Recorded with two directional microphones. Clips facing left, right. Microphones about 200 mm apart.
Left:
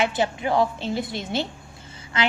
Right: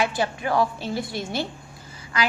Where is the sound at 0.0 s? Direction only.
20° left (ahead or behind).